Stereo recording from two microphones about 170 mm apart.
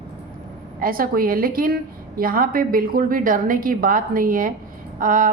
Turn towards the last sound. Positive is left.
turn(degrees=-55)  # may be behind; listen again after turning